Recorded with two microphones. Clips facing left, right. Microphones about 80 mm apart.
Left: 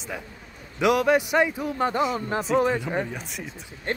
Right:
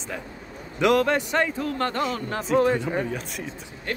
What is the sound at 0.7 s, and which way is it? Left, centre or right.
A man's voice, centre.